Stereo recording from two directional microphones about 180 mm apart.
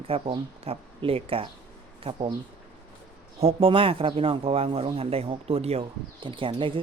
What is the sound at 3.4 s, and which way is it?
Speech, 30° right (ahead or behind).